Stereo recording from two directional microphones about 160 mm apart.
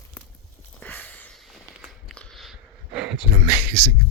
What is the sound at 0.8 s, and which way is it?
Sniff, 10° left (ahead or behind).